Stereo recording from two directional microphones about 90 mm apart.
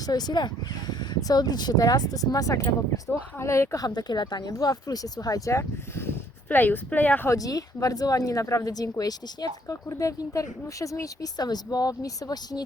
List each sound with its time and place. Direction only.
0.0 s speech: 45° left (ahead or behind)
3.1 s a woman's voice: 30° left (ahead or behind)
3.8 s speech: 50° left (ahead or behind); by 7.3 s 20° left (ahead or behind)
7.3 s a woman's voice: 40° left (ahead or behind)